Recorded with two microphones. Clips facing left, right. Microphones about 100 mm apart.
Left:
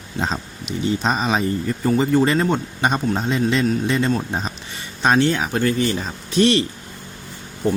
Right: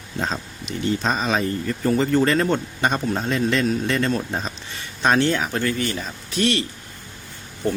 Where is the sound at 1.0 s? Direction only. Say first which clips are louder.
Left 2 dB; 15° left (ahead or behind).